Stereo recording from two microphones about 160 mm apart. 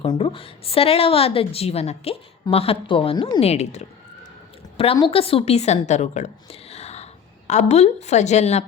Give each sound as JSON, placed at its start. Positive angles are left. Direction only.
{"t": 0.0, "sound": "a woman's voice", "side_deg": 35}
{"t": 3.4, "sound": "speech", "side_deg": 40}
{"t": 4.9, "sound": "a woman's voice", "side_deg": 35}